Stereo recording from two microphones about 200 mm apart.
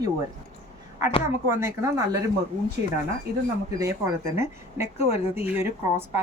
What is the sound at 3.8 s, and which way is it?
A woman's voice, 15° right (ahead or behind).